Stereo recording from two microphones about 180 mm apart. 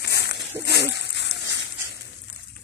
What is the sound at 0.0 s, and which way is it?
Dog, 65° left (ahead or behind).